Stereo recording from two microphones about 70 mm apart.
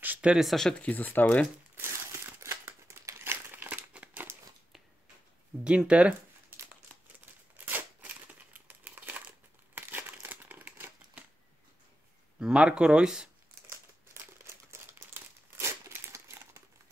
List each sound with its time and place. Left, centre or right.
0.0 s a sound: right
0.4 s speech: centre
0.7 s speech: left
1.8 s crumpling: right
5.6 s speech: centre
7.5 s crumpling: right
12.4 s speech: centre
14.1 s crumpling: right